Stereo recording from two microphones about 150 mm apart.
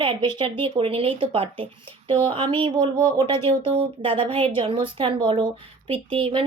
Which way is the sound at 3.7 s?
40° right (ahead or behind).